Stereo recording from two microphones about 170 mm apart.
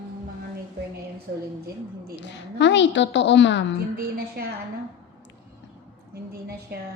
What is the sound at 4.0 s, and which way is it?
Speech, 65° right (ahead or behind).